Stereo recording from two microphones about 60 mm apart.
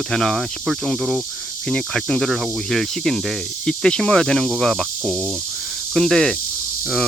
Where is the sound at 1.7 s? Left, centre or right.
Centre.